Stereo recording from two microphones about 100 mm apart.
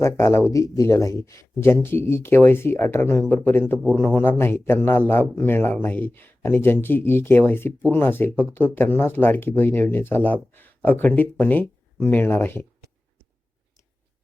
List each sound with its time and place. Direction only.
0.0 s speech: 25° left (ahead or behind)